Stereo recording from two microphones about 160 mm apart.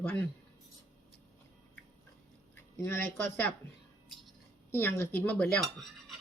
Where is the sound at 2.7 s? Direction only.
15° left (ahead or behind).